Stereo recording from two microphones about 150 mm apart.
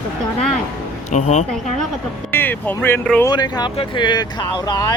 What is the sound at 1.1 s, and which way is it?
Speech, 50° left (ahead or behind).